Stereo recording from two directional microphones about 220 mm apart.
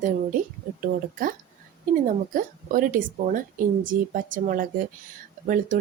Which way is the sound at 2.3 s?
40° right (ahead or behind).